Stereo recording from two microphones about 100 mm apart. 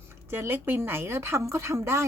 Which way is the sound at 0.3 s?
20° right (ahead or behind).